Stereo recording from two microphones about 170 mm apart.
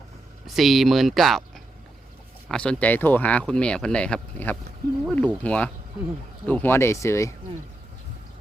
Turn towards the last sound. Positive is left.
turn(degrees=15)  # may be behind; listen again after turning